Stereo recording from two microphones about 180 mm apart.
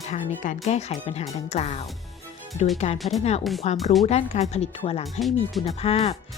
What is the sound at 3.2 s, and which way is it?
Speech, 35° left (ahead or behind).